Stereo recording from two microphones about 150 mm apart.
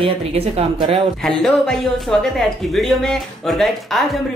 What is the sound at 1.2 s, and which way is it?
A woman's voice, 5° left (ahead or behind).